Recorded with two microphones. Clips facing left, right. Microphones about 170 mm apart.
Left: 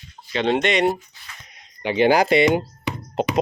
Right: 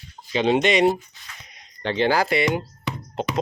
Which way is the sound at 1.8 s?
15° left (ahead or behind).